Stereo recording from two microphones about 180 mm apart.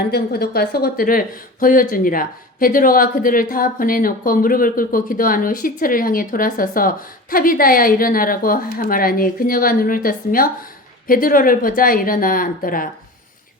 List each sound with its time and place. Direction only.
0.1 s speech: 60° left (ahead or behind)